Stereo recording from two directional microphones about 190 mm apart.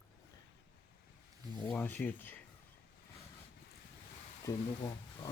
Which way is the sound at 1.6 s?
5° left (ahead or behind).